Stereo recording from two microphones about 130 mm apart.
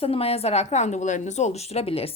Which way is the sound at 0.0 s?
50° left (ahead or behind).